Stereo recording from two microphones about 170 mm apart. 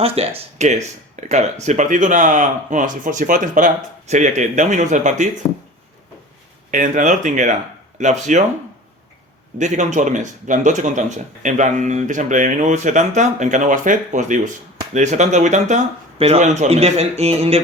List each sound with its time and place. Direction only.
0.0 s speech: 35° right (ahead or behind)
6.7 s speech: 50° right (ahead or behind)
9.6 s speech: 45° right (ahead or behind)